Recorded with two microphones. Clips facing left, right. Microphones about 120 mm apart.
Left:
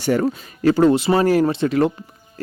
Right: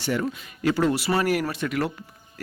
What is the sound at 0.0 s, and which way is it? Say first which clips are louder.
Speech: left 7 dB; 45° left (ahead or behind).